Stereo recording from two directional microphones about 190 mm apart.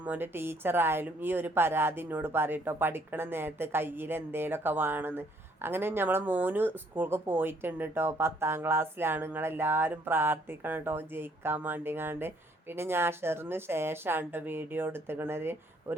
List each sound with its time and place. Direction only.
0.0 s speech: 10° right (ahead or behind)